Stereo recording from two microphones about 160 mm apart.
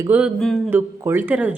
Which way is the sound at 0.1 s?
5° right (ahead or behind).